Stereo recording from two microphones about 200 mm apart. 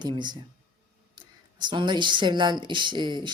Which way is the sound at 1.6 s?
20° right (ahead or behind).